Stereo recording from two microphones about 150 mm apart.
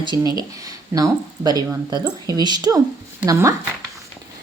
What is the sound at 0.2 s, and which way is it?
Speech, 25° right (ahead or behind).